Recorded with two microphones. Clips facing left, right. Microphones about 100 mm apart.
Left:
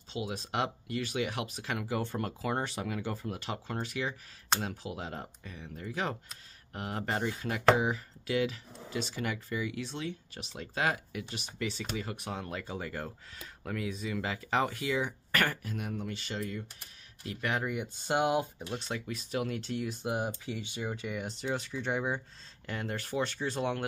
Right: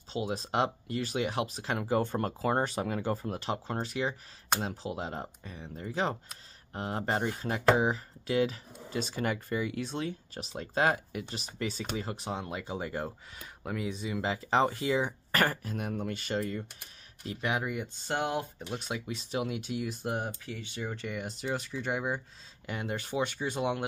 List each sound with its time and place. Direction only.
0.1 s speech: 35° right (ahead or behind)
12.0 s speech: 30° right (ahead or behind)
17.2 s speech: 25° right (ahead or behind)
17.6 s speech: centre (ahead or behind)
18.0 s speech: 10° left (ahead or behind)
18.7 s speech: 10° right (ahead or behind)
22.7 s speech: 15° right (ahead or behind)